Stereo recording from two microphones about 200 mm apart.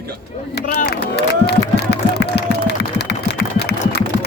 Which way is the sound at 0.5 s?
45° left (ahead or behind).